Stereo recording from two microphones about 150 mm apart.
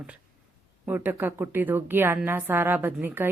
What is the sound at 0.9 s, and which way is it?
Speech, 15° right (ahead or behind).